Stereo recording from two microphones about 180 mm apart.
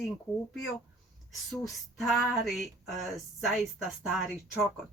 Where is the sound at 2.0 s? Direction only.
Centre (ahead or behind).